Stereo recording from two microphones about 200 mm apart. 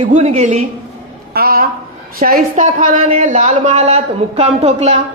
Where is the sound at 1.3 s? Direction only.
50° right (ahead or behind).